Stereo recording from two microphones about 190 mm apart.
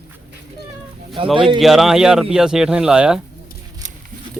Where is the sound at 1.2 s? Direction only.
30° right (ahead or behind).